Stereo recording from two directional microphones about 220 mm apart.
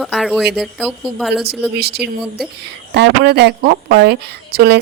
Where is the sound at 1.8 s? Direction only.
45° right (ahead or behind).